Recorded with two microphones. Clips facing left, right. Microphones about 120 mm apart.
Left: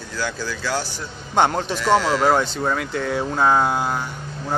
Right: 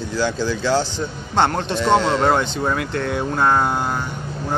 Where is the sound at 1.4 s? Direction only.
5° left (ahead or behind).